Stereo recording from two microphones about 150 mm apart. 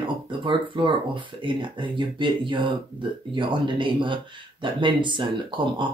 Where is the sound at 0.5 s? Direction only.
35° right (ahead or behind).